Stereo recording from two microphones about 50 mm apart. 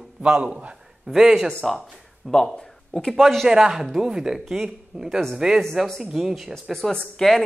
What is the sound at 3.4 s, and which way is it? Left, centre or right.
A man's voice, centre.